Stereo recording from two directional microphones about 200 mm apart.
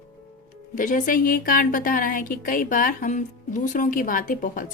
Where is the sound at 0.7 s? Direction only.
45° left (ahead or behind).